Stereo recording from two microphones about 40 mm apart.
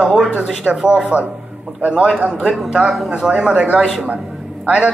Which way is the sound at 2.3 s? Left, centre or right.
Centre.